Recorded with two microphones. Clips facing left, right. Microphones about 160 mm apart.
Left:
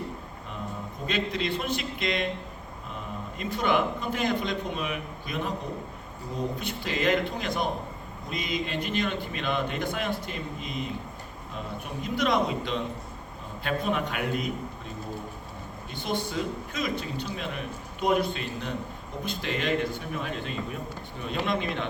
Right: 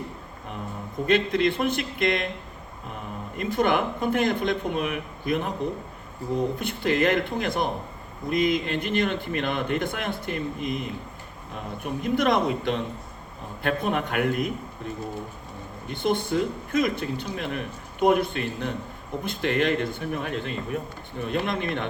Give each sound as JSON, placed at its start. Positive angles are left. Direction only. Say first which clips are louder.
{"t": 1.0, "sound": "speech", "louder": "right 8 dB", "side_deg": -55}
{"t": 3.3, "sound": "a man's voice", "louder": "right 3 dB", "side_deg": -55}
{"t": 6.6, "sound": "a man's voice", "louder": "right 7 dB", "side_deg": -55}
{"t": 12.0, "sound": "speech", "louder": "right 3 dB", "side_deg": -55}
{"t": 15.9, "sound": "speech", "louder": "right 7 dB", "side_deg": -55}